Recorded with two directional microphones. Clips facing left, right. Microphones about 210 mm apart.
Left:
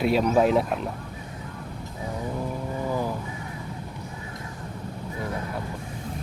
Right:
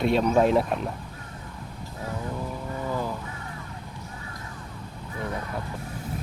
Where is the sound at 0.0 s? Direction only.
5° left (ahead or behind).